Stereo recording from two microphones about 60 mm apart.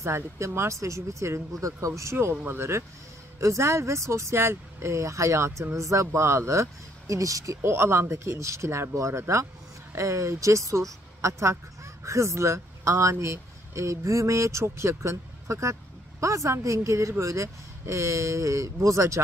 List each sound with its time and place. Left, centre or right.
0.0 s speech: right
2.1 s speech: right
3.3 s speech: right
7.6 s speech: right